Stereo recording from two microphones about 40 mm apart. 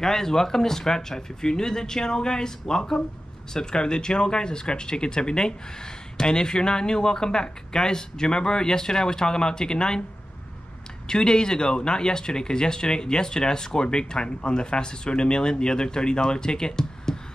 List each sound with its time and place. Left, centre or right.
0.0 s speech: centre
11.1 s speech: centre